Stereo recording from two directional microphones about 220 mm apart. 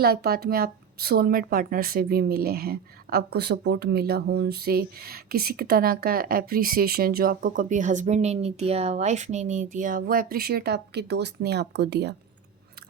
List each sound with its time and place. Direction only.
0.0 s speech: 45° right (ahead or behind)